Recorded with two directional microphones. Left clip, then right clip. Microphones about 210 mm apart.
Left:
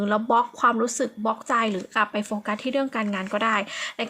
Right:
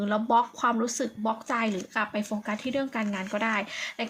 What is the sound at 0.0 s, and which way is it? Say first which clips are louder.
Speech: left 3 dB; 25° left (ahead or behind).